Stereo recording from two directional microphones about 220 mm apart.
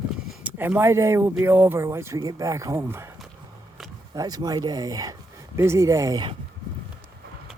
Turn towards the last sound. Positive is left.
turn(degrees=-15)  # may be behind; listen again after turning